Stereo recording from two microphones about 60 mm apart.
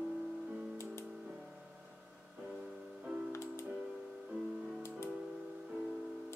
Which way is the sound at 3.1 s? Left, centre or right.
Right.